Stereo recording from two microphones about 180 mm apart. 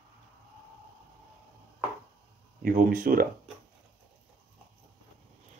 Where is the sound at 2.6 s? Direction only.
50° right (ahead or behind).